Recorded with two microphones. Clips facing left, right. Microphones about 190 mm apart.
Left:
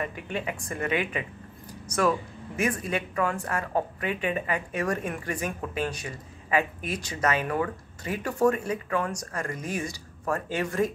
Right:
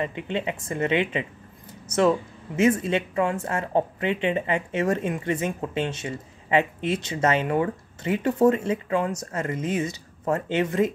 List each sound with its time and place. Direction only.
0.0 s speech: 25° right (ahead or behind)